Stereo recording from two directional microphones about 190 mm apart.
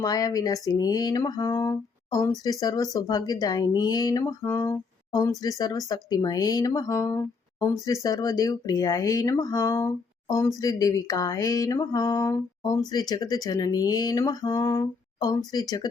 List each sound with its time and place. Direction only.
0.0 s speech: 20° left (ahead or behind)